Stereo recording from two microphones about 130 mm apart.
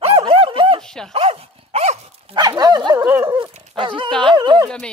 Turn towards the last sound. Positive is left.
turn(degrees=-35)  # may be behind; listen again after turning